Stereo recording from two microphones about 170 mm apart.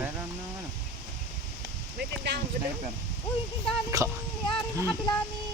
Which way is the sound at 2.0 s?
90° right.